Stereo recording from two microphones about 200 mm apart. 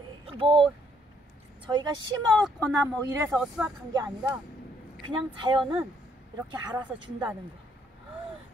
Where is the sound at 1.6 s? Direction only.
20° right (ahead or behind).